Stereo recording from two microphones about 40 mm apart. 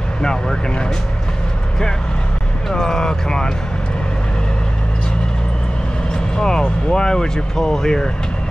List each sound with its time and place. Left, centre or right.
0.2 s speech: centre
2.7 s speech: centre
6.1 s vehicle: centre
6.9 s speech: centre